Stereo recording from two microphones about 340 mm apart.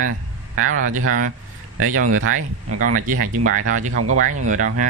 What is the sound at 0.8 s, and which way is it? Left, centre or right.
Speech, right.